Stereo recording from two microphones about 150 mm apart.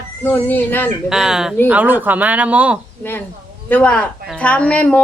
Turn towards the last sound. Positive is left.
turn(degrees=10)  # may be behind; listen again after turning